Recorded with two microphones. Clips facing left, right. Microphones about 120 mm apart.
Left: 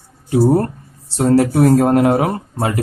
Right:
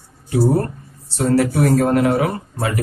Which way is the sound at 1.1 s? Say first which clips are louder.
Left 3 dB; 40° left (ahead or behind).